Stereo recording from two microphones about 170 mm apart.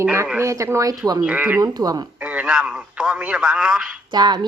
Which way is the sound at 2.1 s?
5° right (ahead or behind).